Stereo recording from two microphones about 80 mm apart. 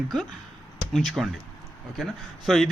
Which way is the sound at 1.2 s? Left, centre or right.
Centre.